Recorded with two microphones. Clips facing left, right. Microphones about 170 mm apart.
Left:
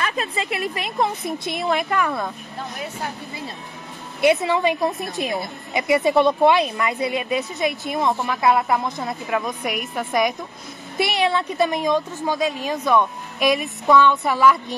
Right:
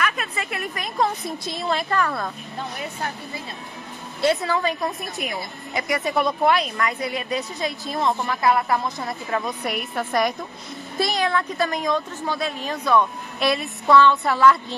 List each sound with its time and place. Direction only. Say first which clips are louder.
0.0 s a woman's voice: left 1 dB; 30° left (ahead or behind); by 2.3 s 10° left (ahead or behind)
4.2 s a woman's voice: left 3 dB; 15° left (ahead or behind)
9.9 s a woman's voice: left 1 dB; 5° left (ahead or behind)
11.3 s speech: left 3 dB; 20° left (ahead or behind)